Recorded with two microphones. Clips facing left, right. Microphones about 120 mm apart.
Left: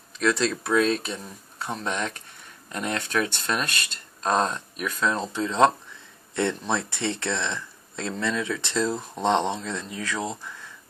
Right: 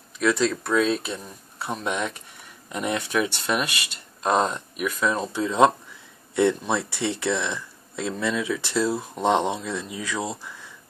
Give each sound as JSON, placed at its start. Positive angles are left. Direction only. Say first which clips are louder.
{"t": 0.2, "sound": "speech", "louder": "right 2 dB", "side_deg": 0}